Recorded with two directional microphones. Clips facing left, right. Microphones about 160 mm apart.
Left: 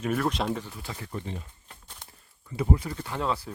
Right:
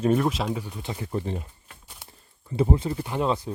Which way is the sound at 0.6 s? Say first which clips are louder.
Right 5 dB; 20° right (ahead or behind).